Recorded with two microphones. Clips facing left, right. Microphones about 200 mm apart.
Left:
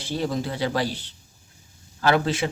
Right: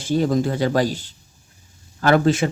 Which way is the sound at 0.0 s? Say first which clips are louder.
Right 7 dB; 45° right (ahead or behind).